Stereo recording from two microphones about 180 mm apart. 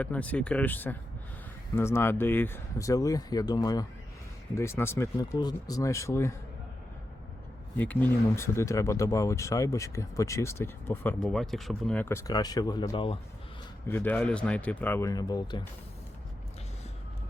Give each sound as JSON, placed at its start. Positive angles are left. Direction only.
{"t": 0.0, "sound": "speech", "side_deg": 10}
{"t": 7.8, "sound": "speech", "side_deg": 10}
{"t": 13.8, "sound": "speech", "side_deg": 10}